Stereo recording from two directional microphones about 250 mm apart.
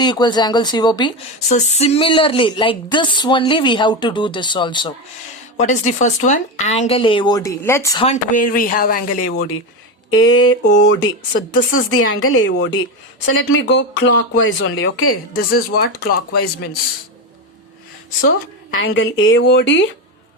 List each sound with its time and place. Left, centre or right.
0.0 s speech: centre
1.5 s a woman's voice: left
5.5 s a woman's voice: left; by 8.0 s centre
8.0 s speech: left
10.1 s speech: left
15.3 s speech: left
18.3 s a woman's voice: left